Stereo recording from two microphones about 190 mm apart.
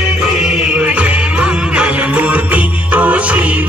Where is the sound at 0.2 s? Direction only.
5° right (ahead or behind).